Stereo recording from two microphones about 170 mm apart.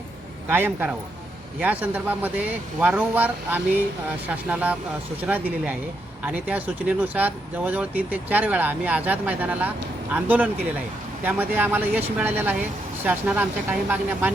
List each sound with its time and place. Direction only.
0.4 s speech: 15° right (ahead or behind)